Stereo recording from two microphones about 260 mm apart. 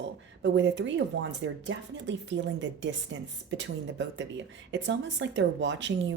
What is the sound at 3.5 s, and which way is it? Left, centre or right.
Speech, right.